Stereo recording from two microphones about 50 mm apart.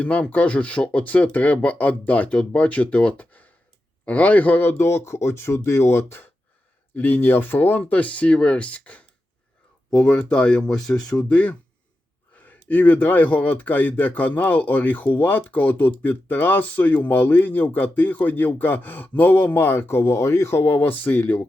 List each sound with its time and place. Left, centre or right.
0.0 s speech: left
4.7 s speech: left
6.9 s speech: left; by 11.3 s centre
11.3 s speech: left
20.7 s speech: left